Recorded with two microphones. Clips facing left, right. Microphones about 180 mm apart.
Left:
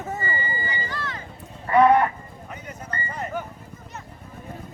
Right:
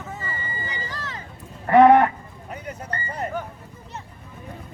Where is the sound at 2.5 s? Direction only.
35° right (ahead or behind).